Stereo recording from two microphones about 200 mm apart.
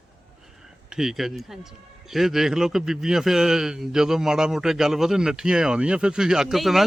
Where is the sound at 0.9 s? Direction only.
Centre (ahead or behind).